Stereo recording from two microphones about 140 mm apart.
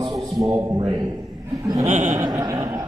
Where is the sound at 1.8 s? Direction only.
55° right (ahead or behind).